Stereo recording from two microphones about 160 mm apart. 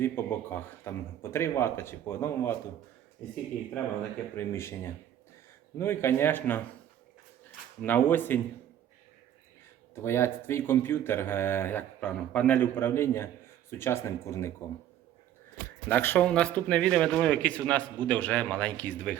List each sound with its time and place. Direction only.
0.0 s speech: 15° left (ahead or behind)
4.4 s speech: 15° left (ahead or behind)
7.8 s speech: 10° left (ahead or behind)
9.9 s speech: 15° left (ahead or behind)
15.9 s speech: 10° left (ahead or behind)